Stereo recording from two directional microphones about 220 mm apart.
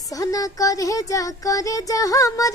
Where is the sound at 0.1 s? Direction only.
15° left (ahead or behind).